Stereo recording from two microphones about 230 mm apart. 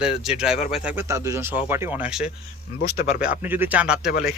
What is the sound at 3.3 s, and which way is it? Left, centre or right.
Speech, centre.